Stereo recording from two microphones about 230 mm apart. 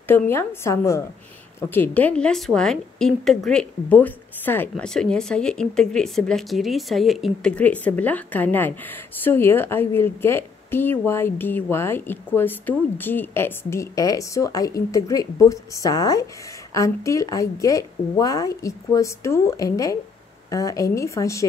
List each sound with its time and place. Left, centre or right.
0.1 s a woman's voice: centre